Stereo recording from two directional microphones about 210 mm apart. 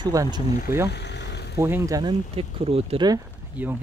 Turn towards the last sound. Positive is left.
turn(degrees=-10)  # may be behind; listen again after turning